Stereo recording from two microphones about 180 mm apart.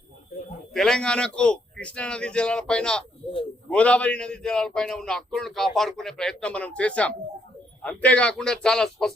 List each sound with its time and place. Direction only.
0.7 s a man's voice: centre (ahead or behind)